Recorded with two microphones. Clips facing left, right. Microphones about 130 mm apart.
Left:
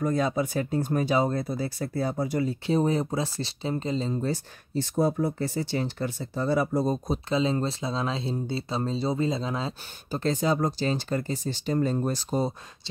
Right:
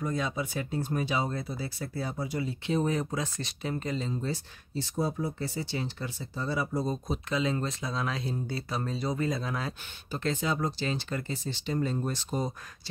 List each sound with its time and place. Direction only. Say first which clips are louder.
0.0 s speech: left 6 dB; 45° left (ahead or behind); by 4.1 s 30° left (ahead or behind)
4.1 s speech: left 5 dB; 50° left (ahead or behind)
7.1 s speech: left 4 dB; 30° left (ahead or behind)
10.1 s speech: left 5 dB; 35° left (ahead or behind)